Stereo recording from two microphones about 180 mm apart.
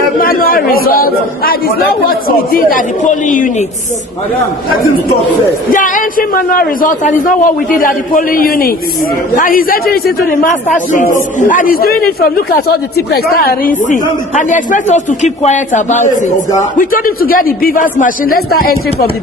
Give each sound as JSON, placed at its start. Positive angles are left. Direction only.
{"t": 0.2, "sound": "a man's voice", "side_deg": 55}
{"t": 5.7, "sound": "a man's voice", "side_deg": 50}